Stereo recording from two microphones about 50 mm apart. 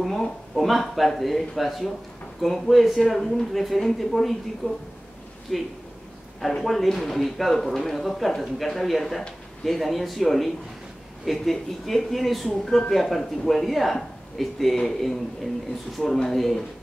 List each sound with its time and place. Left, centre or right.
0.6 s speech: centre
4.6 s a woman's voice: left
5.5 s speech: centre